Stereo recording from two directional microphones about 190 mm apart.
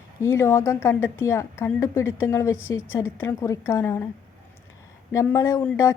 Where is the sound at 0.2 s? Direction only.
15° left (ahead or behind).